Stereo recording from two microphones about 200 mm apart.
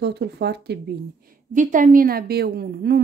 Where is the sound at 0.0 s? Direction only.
55° right (ahead or behind).